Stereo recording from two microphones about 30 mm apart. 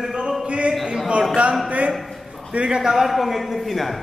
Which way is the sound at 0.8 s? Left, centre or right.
Right.